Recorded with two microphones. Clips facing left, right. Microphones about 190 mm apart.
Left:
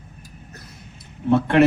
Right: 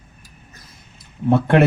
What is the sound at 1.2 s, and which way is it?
Speech, 55° right (ahead or behind).